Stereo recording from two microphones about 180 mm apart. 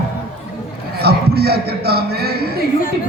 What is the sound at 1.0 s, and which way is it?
A man's voice, 60° right (ahead or behind).